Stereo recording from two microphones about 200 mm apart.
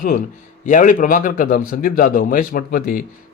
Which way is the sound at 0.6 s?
40° left (ahead or behind).